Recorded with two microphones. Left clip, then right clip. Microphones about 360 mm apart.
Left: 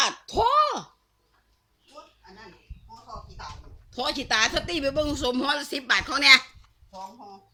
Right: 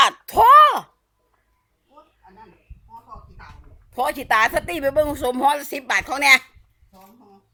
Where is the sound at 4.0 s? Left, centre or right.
Centre.